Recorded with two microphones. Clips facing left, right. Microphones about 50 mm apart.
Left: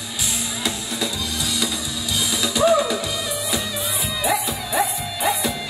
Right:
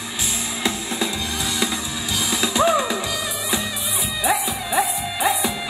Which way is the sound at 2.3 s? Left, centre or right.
Right.